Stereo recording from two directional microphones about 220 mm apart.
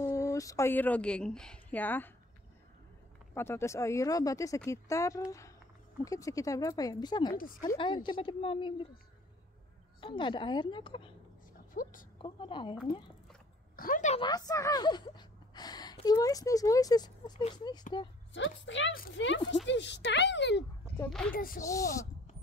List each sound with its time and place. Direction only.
0.0 s speech: 15° left (ahead or behind)
3.3 s speech: 10° left (ahead or behind)
7.3 s speech: 40° left (ahead or behind)
7.7 s a woman's voice: 20° left (ahead or behind)
9.9 s a woman's voice: 20° left (ahead or behind)
11.7 s a woman's voice: 35° left (ahead or behind)
12.2 s a woman's voice: 20° left (ahead or behind)
13.7 s speech: 40° left (ahead or behind)
14.2 s a woman's voice: 15° left (ahead or behind)
18.3 s speech: 55° left (ahead or behind)
21.0 s speech: 5° left (ahead or behind)
21.3 s speech: 40° left (ahead or behind)
21.6 s speech: 15° left (ahead or behind)